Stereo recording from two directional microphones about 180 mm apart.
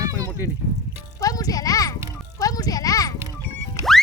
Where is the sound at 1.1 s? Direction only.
20° left (ahead or behind).